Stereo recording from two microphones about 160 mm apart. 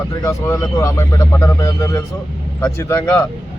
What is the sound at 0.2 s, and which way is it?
Speech, 20° left (ahead or behind).